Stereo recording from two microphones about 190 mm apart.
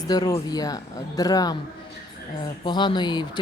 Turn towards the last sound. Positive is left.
turn(degrees=20)  # may be behind; listen again after turning